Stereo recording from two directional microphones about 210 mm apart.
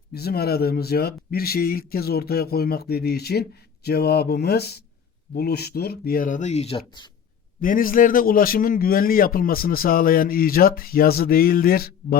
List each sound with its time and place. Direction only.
0.1 s a man's voice: 50° left (ahead or behind); by 7.1 s 25° left (ahead or behind)
7.6 s a man's voice: 40° left (ahead or behind)